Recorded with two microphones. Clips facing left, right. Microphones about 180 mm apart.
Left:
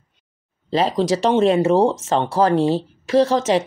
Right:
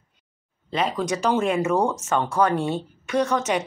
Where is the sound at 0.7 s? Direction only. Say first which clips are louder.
Left 6 dB; 30° left (ahead or behind).